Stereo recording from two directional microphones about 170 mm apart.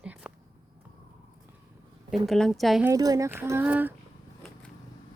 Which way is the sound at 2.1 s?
Centre (ahead or behind).